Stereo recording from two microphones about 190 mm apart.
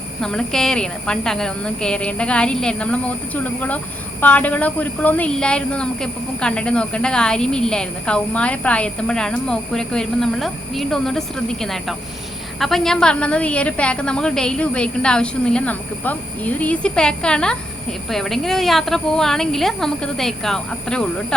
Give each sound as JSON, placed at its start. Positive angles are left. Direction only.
{"t": 0.2, "sound": "a woman's voice", "side_deg": 5}